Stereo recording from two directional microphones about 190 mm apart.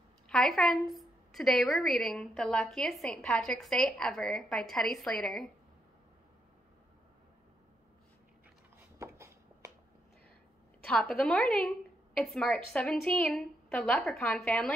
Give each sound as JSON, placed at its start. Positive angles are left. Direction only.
{"t": 0.3, "sound": "a woman's voice", "side_deg": 0}
{"t": 8.9, "sound": "a sound", "side_deg": -15}
{"t": 10.8, "sound": "a woman's voice", "side_deg": 5}